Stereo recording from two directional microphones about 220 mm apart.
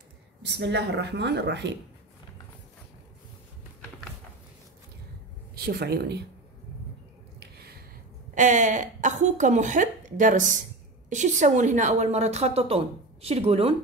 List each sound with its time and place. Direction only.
0.4 s speech: 50° right (ahead or behind)
5.5 s a woman's voice: 45° right (ahead or behind)
7.3 s a sound: 45° right (ahead or behind)
8.4 s a woman's voice: 35° right (ahead or behind)